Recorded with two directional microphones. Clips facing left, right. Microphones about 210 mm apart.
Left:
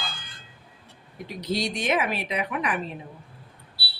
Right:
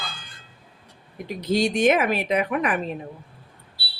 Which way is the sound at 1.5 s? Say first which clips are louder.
Right 7 dB; 50° right (ahead or behind).